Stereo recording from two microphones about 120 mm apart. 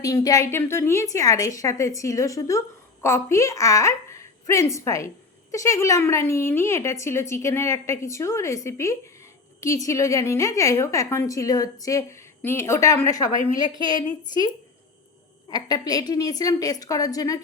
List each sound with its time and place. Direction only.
0.0 s a woman's voice: 30° left (ahead or behind)
15.4 s a woman's voice: 35° left (ahead or behind)